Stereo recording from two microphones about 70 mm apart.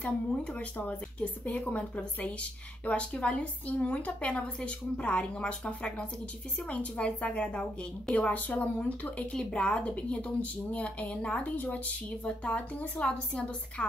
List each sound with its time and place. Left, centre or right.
0.0 s a woman's voice: centre